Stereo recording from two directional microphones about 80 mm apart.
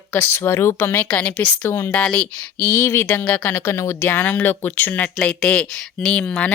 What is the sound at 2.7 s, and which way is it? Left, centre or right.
Speech, left.